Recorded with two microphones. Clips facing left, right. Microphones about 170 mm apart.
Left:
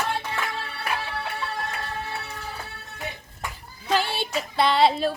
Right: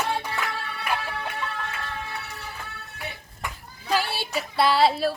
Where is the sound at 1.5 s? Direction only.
40° left (ahead or behind).